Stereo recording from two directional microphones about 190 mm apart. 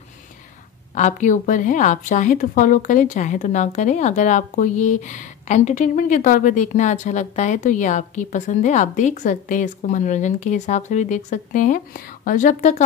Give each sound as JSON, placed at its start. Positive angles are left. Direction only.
{"t": 0.9, "sound": "a woman's voice", "side_deg": 40}